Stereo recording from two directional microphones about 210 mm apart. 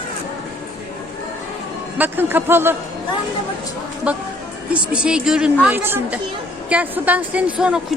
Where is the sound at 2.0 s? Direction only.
10° right (ahead or behind).